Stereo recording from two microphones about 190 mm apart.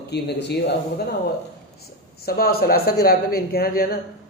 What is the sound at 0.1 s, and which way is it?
Speech, 60° left (ahead or behind).